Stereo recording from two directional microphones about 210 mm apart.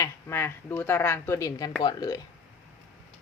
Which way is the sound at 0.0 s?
10° left (ahead or behind).